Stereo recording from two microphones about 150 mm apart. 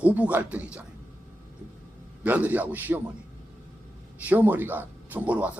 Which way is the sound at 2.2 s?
10° right (ahead or behind).